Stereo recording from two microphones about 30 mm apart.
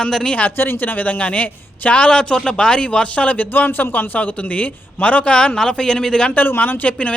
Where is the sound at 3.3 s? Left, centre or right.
Left.